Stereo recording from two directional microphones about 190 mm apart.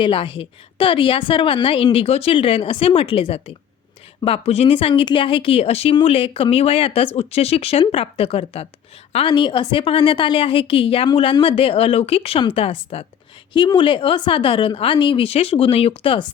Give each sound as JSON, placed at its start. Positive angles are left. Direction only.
{"t": 0.0, "sound": "a woman's voice", "side_deg": 25}